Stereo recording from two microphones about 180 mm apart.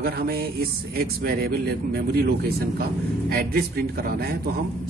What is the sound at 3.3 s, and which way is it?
Speech, 55° right (ahead or behind).